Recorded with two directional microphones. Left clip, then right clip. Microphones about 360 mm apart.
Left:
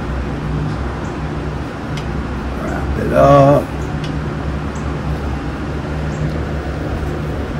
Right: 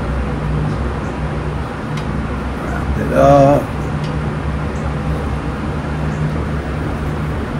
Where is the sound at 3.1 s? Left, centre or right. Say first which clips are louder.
Even; left.